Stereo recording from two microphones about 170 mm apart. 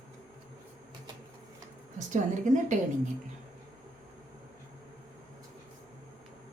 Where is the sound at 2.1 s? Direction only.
50° right (ahead or behind).